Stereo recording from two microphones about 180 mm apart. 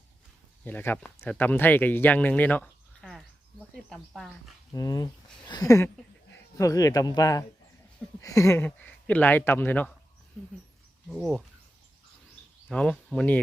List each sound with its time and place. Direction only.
0.6 s speech: 10° left (ahead or behind)
4.7 s speech: 20° left (ahead or behind); by 11.4 s centre (ahead or behind)
12.6 s speech: 5° left (ahead or behind)